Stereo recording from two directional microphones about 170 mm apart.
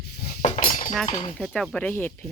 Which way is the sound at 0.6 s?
55° left (ahead or behind).